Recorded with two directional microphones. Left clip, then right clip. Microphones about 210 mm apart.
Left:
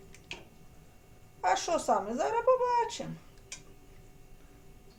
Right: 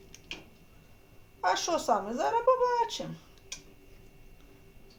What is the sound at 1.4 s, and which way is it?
Speech, 15° right (ahead or behind).